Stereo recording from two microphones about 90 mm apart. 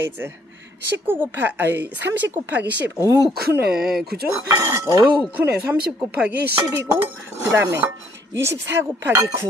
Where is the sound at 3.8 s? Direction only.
5° right (ahead or behind).